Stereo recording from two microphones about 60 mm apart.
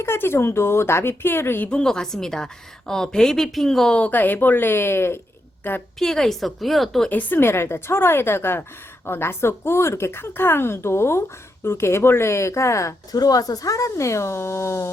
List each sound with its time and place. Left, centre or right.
0.0 s speech: left
1.8 s a woman's voice: centre
3.9 s a woman's voice: left
6.0 s a woman's voice: centre
7.1 s a woman's voice: left